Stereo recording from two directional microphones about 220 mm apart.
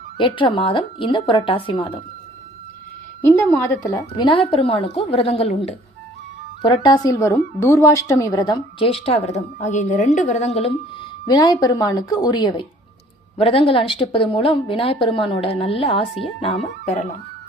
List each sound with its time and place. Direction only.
0.2 s speech: 20° left (ahead or behind)
3.2 s speech: 10° left (ahead or behind); by 10.7 s 30° left (ahead or behind)
11.3 s speech: 20° left (ahead or behind)